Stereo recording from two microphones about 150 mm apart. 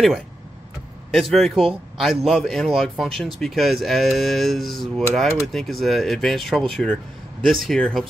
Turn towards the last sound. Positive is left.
turn(degrees=5)  # may be behind; listen again after turning